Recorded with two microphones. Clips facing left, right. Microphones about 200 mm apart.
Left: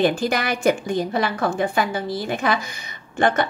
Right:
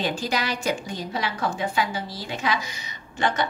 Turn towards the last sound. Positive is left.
turn(degrees=55)  # may be behind; listen again after turning